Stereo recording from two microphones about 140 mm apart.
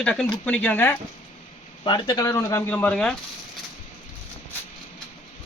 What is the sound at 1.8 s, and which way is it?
Speech, 35° left (ahead or behind).